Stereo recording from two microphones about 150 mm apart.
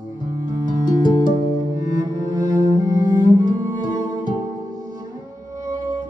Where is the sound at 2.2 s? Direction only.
25° right (ahead or behind).